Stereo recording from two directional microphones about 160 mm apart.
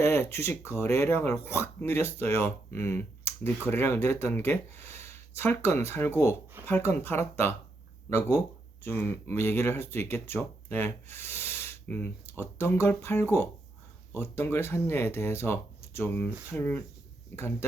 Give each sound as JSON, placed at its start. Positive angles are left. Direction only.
{"t": 0.0, "sound": "speech", "side_deg": 15}
{"t": 8.8, "sound": "speech", "side_deg": 15}